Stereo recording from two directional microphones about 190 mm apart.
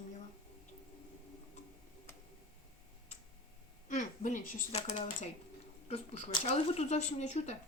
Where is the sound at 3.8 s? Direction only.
40° left (ahead or behind).